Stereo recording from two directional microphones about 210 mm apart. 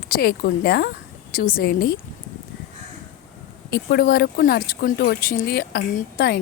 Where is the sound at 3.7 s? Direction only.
50° left (ahead or behind).